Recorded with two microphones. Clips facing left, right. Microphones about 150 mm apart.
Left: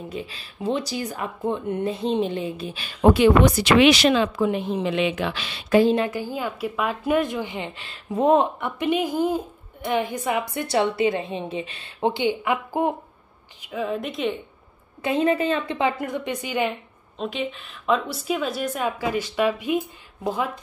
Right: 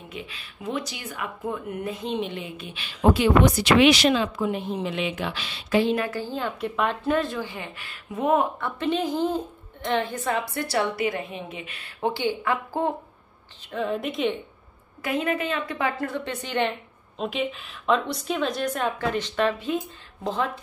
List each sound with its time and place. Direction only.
0.1 s speech: 35° left (ahead or behind)
3.0 s speech: 70° left (ahead or behind)
5.7 s a woman's voice: 45° left (ahead or behind)
5.9 s a woman's voice: 20° left (ahead or behind)
13.6 s a woman's voice: 5° left (ahead or behind)
15.0 s a woman's voice: 25° left (ahead or behind); by 16.7 s 10° left (ahead or behind)
17.2 s a woman's voice: centre (ahead or behind)